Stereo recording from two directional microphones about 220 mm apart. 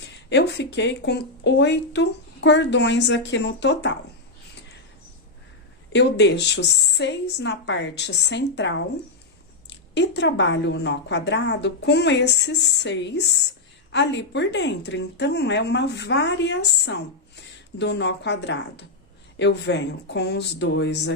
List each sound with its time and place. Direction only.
0.3 s speech: 50° left (ahead or behind)
5.9 s speech: 50° left (ahead or behind)